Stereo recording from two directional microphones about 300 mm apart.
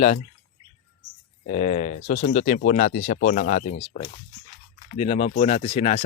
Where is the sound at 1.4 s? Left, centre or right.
Left.